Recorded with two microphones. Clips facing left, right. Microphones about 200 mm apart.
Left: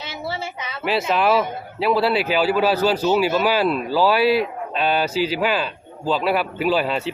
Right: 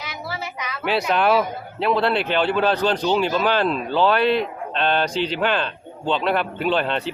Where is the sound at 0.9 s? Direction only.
Centre (ahead or behind).